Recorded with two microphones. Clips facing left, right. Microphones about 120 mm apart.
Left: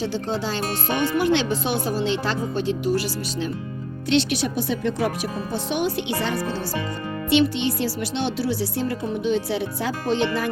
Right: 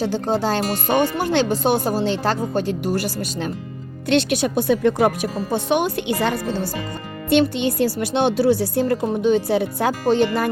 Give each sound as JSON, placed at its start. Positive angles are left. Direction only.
{"t": 0.0, "sound": "speech", "side_deg": -45}